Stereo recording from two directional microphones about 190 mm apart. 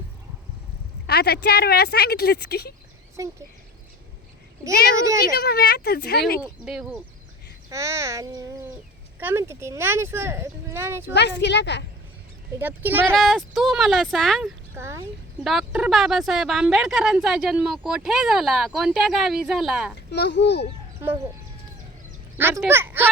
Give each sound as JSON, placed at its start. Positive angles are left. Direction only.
{"t": 1.0, "sound": "speech", "side_deg": 60}
{"t": 3.2, "sound": "speech", "side_deg": -15}
{"t": 4.9, "sound": "speech", "side_deg": -15}
{"t": 5.3, "sound": "speech", "side_deg": 55}
{"t": 6.4, "sound": "speech", "side_deg": -5}
{"t": 7.7, "sound": "speech", "side_deg": -15}
{"t": 11.1, "sound": "speech", "side_deg": 65}
{"t": 12.5, "sound": "speech", "side_deg": -10}
{"t": 13.1, "sound": "speech", "side_deg": 0}
{"t": 14.8, "sound": "speech", "side_deg": -15}
{"t": 15.4, "sound": "speech", "side_deg": -5}
{"t": 20.1, "sound": "speech", "side_deg": 65}
{"t": 21.0, "sound": "speech", "side_deg": -15}
{"t": 22.4, "sound": "speech", "side_deg": -15}